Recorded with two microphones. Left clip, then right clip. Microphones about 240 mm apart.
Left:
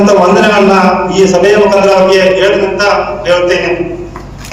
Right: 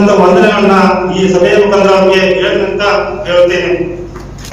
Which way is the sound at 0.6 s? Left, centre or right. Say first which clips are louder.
Left 1 dB; left.